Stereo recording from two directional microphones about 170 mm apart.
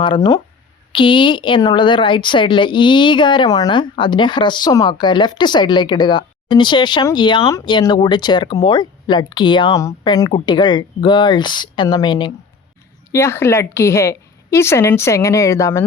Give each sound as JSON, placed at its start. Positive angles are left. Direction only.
{"t": 0.0, "sound": "speech", "side_deg": 25}
{"t": 13.1, "sound": "a woman's voice", "side_deg": 15}